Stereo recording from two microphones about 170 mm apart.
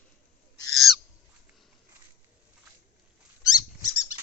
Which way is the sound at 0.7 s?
Centre (ahead or behind).